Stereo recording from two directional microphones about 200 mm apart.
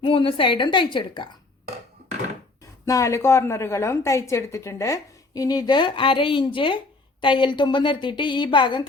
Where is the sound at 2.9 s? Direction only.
15° left (ahead or behind).